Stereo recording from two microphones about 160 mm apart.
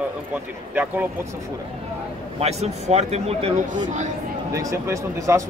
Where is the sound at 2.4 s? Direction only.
40° right (ahead or behind).